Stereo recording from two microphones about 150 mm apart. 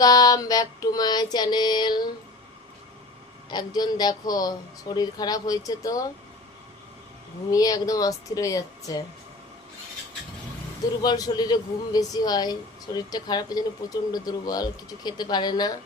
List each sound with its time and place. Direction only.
0.0 s speech: 25° left (ahead or behind)
3.5 s speech: 30° left (ahead or behind)
7.5 s speech: 25° left (ahead or behind)
11.0 s speech: 30° left (ahead or behind)